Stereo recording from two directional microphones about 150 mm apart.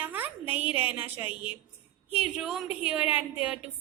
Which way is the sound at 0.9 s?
10° right (ahead or behind).